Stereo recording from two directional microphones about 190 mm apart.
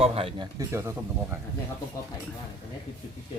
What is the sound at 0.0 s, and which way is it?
Speech, 30° right (ahead or behind).